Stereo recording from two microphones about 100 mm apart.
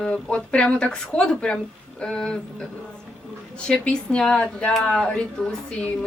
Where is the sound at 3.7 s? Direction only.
10° left (ahead or behind).